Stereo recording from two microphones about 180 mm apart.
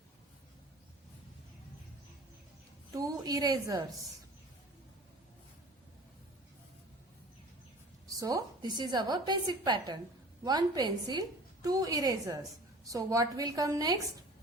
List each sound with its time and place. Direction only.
2.9 s a woman's voice: 20° right (ahead or behind)
8.0 s a woman's voice: 20° right (ahead or behind)